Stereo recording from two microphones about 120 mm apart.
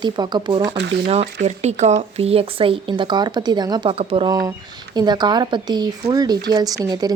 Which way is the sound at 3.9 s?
55° right (ahead or behind).